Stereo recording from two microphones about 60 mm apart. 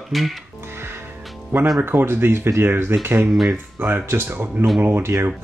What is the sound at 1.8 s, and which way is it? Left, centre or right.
Speech, right.